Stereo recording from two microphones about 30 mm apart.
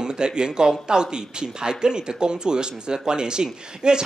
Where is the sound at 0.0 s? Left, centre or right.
Right.